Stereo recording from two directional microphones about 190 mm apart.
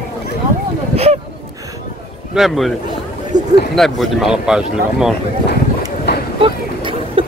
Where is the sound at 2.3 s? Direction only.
Centre (ahead or behind).